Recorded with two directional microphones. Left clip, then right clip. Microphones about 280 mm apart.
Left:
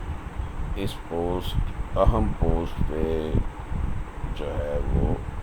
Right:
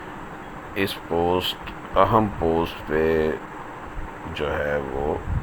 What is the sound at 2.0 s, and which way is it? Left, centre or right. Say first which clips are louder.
Speech: right 6 dB; right.